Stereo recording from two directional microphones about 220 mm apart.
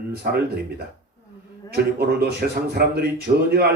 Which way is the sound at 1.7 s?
45° right (ahead or behind).